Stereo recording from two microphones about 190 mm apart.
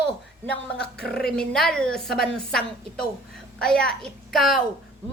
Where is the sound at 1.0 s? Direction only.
5° left (ahead or behind).